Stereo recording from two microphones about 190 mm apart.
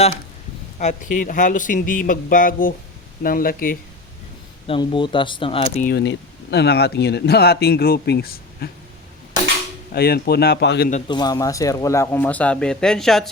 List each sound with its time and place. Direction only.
0.8 s speech: 40° left (ahead or behind)
4.6 s speech: 25° left (ahead or behind)
5.8 s speech: 60° left (ahead or behind)
9.9 s speech: 55° left (ahead or behind)
11.1 s speech: 20° left (ahead or behind); by 13.3 s centre (ahead or behind)